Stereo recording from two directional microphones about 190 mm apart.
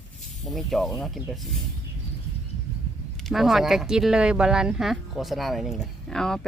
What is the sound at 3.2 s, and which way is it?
Speech, centre (ahead or behind).